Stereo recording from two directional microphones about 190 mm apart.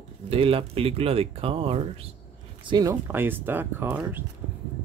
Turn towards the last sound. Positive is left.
turn(degrees=-10)  # may be behind; listen again after turning